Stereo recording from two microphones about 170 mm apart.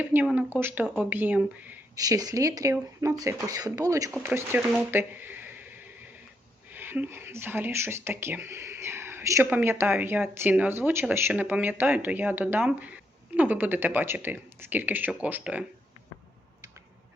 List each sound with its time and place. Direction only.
0.0 s speech: 10° right (ahead or behind)
2.0 s speech: 20° right (ahead or behind)